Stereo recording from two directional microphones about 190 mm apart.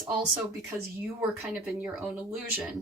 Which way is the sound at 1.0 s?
5° right (ahead or behind).